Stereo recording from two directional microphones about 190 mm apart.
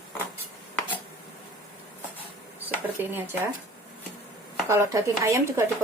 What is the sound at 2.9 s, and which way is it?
Speech, 10° right (ahead or behind).